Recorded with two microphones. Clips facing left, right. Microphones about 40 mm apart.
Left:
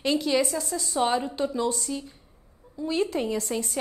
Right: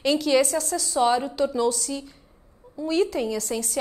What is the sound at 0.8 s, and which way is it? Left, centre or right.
A woman's voice, left.